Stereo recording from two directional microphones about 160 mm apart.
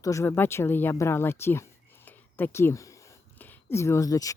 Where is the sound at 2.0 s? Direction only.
15° left (ahead or behind).